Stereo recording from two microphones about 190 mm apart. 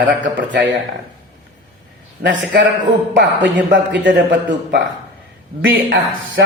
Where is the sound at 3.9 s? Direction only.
70° right (ahead or behind).